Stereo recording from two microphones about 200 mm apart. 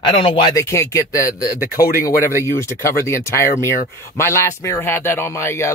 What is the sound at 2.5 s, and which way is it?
A man's voice, 15° left (ahead or behind).